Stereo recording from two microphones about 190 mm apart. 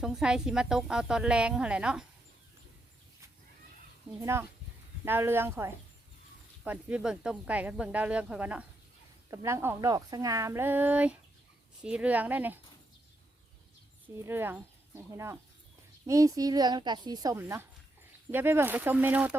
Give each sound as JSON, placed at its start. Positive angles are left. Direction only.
{"t": 0.0, "sound": "a woman's voice", "side_deg": -5}
{"t": 4.2, "sound": "speech", "side_deg": -15}
{"t": 14.2, "sound": "speech", "side_deg": -10}